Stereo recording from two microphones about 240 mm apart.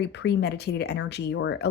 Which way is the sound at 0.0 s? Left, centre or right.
Left.